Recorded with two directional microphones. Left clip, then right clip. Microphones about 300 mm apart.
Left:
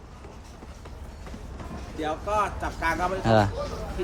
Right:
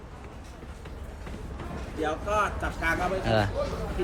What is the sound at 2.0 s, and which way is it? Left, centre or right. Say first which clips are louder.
Speech: left 1 dB; left.